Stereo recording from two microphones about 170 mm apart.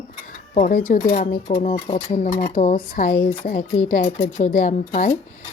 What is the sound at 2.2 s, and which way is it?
Speech, 50° left (ahead or behind).